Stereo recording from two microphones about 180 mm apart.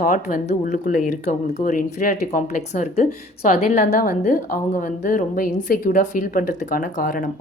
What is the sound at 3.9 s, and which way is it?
A woman's voice, 50° left (ahead or behind).